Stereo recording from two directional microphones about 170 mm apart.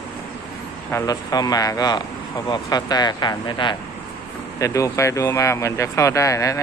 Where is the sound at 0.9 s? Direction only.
20° left (ahead or behind).